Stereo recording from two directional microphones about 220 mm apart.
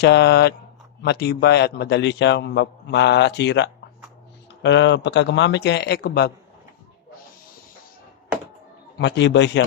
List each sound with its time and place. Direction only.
0.0 s a man's voice: 50° left (ahead or behind)
9.0 s a man's voice: 55° left (ahead or behind)